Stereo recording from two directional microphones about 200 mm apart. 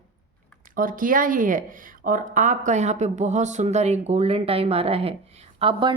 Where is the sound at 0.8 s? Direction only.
45° right (ahead or behind).